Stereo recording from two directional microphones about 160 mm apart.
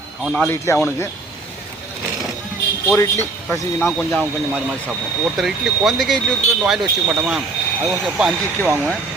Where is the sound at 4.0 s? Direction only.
Centre (ahead or behind).